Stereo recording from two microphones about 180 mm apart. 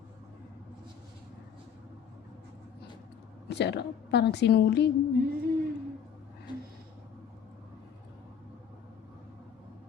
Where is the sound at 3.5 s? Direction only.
70° left (ahead or behind).